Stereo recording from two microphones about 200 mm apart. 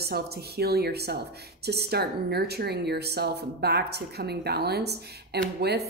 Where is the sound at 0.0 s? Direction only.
55° right (ahead or behind).